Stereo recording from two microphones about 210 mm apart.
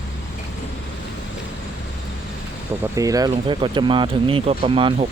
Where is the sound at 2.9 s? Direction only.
15° right (ahead or behind).